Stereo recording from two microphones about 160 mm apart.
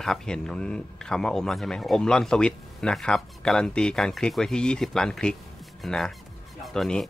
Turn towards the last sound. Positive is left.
turn(degrees=5)  # may be behind; listen again after turning